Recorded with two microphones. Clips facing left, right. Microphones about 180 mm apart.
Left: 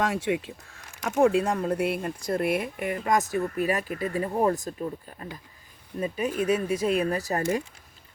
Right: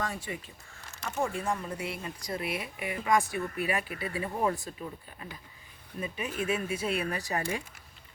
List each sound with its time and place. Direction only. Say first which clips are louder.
0.0 s speech: left 10 dB; 80° left; by 4.7 s 40° left (ahead or behind)
6.0 s speech: left 7 dB; 40° left (ahead or behind)